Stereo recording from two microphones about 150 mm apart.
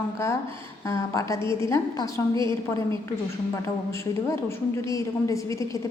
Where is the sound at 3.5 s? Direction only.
20° left (ahead or behind).